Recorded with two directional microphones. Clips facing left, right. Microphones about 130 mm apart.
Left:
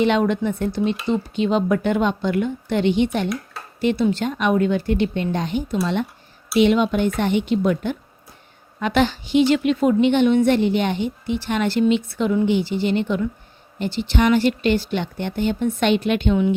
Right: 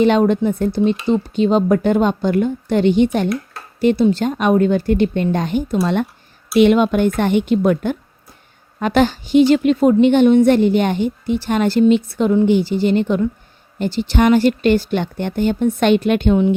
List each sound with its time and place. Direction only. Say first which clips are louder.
0.0 s a woman's voice: right 5 dB; 40° right (ahead or behind)